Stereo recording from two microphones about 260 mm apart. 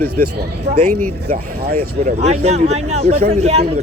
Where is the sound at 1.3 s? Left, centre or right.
Right.